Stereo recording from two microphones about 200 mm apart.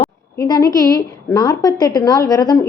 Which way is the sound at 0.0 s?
15° left (ahead or behind).